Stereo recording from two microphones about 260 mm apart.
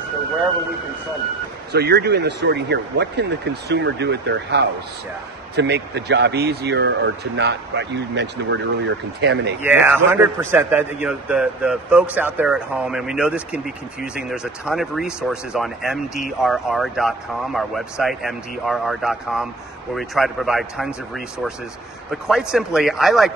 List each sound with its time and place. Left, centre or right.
1.7 s speech: right
9.6 s a man's voice: centre